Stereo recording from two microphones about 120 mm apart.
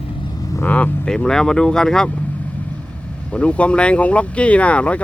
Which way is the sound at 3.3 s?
10° left (ahead or behind).